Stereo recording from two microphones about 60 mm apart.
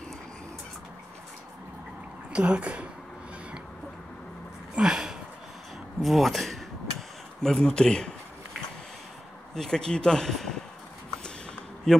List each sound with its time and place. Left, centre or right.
2.3 s a woman's voice: centre
4.7 s a sound: centre
5.9 s speech: centre
9.6 s speech: centre
11.9 s speech: centre